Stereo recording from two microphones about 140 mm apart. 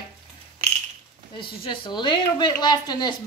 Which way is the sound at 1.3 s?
35° left (ahead or behind).